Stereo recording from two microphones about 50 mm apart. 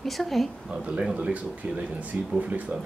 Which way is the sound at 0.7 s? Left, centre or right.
Right.